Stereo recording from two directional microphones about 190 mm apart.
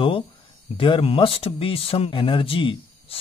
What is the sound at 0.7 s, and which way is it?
Speech, 25° left (ahead or behind).